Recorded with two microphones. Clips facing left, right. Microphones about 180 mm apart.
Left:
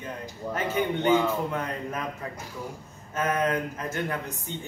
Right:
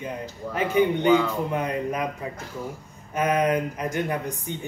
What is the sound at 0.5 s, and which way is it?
Speech, 15° right (ahead or behind).